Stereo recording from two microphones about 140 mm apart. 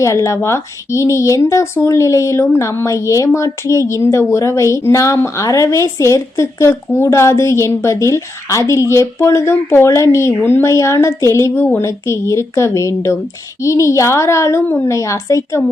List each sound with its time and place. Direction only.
0.0 s speech: 20° left (ahead or behind)